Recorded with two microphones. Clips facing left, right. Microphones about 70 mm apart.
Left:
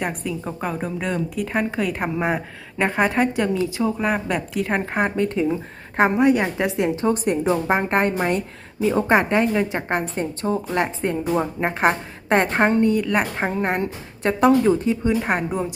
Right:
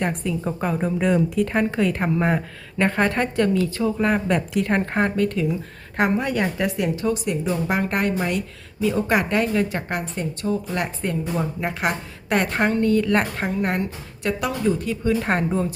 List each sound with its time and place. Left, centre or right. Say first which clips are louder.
0.0 s a woman's voice: right 2 dB; centre
5.0 s a woman's voice: left 1 dB; left
7.1 s a woman's voice: left 4 dB; left
13.0 s a woman's voice: right 1 dB; centre
13.5 s a woman's voice: left 1 dB; left